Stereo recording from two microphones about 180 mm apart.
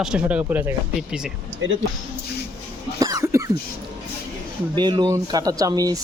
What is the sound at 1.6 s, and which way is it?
Speech, 90° right.